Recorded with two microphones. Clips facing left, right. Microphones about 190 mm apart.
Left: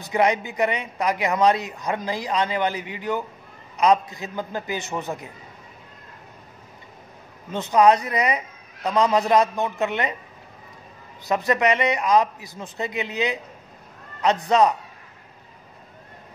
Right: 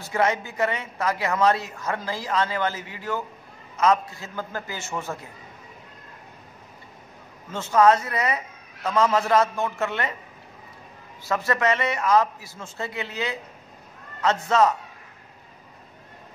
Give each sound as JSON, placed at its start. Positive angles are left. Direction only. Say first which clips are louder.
{"t": 0.0, "sound": "a woman's voice", "louder": "left 3 dB", "side_deg": 15}
{"t": 7.5, "sound": "a woman's voice", "louder": "left 1 dB", "side_deg": 15}
{"t": 11.2, "sound": "a woman's voice", "louder": "left 3 dB", "side_deg": 15}